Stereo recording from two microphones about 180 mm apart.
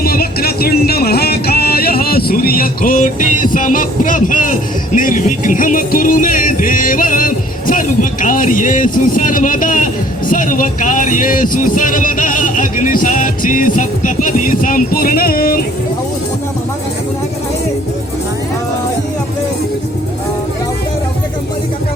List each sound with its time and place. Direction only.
0.0 s speech: 55° left (ahead or behind)